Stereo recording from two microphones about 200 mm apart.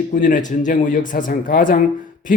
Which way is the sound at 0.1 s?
40° left (ahead or behind).